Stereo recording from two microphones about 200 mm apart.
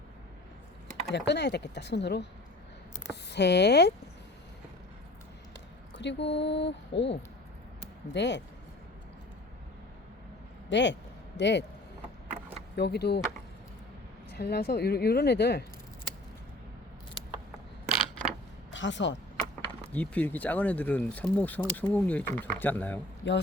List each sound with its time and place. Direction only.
1.1 s speech: 60° left (ahead or behind)
6.0 s speech: 60° left (ahead or behind)
10.7 s speech: 65° left (ahead or behind)
12.7 s speech: 55° left (ahead or behind)
14.3 s speech: 50° left (ahead or behind)
17.8 s a sound: centre (ahead or behind)
18.7 s speech: 65° left (ahead or behind)
19.9 s speech: 5° left (ahead or behind)